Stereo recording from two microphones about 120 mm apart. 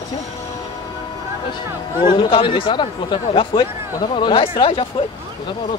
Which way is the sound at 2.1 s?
45° left (ahead or behind).